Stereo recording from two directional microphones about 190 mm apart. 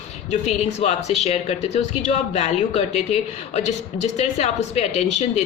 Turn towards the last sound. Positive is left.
turn(degrees=35)  # may be behind; listen again after turning